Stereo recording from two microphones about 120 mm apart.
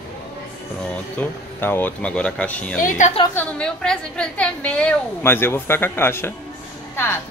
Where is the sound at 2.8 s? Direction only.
90° left.